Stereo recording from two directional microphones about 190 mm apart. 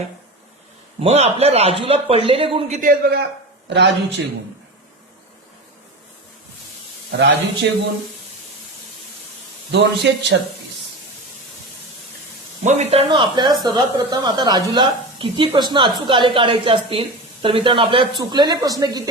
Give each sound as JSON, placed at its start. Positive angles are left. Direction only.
{"t": 1.0, "sound": "a man's voice", "side_deg": -35}
{"t": 2.8, "sound": "speech", "side_deg": -55}
{"t": 3.7, "sound": "a man's voice", "side_deg": -65}
{"t": 7.1, "sound": "speech", "side_deg": -65}
{"t": 9.7, "sound": "speech", "side_deg": -65}
{"t": 12.6, "sound": "speech", "side_deg": -35}